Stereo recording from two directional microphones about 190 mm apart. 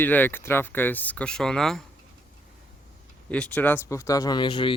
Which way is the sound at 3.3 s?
5° left (ahead or behind).